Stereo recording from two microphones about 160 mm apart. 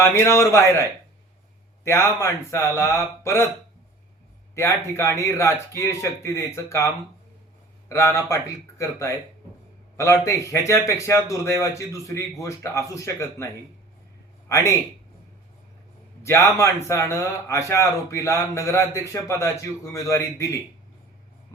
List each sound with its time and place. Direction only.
0.0 s speech: 15° left (ahead or behind)
4.5 s a man's voice: 15° left (ahead or behind)
16.2 s speech: 15° left (ahead or behind)